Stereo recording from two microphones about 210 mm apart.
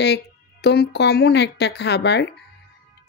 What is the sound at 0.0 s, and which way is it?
Speech, 50° left (ahead or behind).